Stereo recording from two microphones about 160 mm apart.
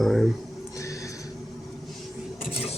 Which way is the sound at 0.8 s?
20° left (ahead or behind).